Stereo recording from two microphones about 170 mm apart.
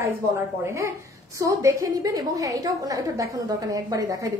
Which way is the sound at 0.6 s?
15° right (ahead or behind).